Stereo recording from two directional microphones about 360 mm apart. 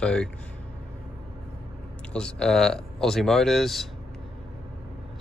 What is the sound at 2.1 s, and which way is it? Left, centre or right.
Speech, centre.